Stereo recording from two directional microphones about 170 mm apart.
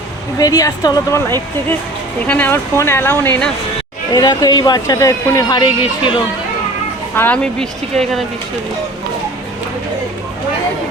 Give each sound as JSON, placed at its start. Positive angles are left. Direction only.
{"t": 0.3, "sound": "speech", "side_deg": 20}
{"t": 2.2, "sound": "speech", "side_deg": 10}
{"t": 7.2, "sound": "speech", "side_deg": 5}